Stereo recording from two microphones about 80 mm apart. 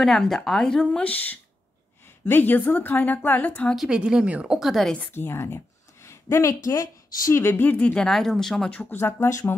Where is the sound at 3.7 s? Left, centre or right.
Centre.